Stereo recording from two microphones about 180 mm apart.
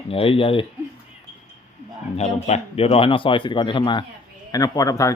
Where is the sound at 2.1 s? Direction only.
35° left (ahead or behind); by 5.1 s 20° left (ahead or behind).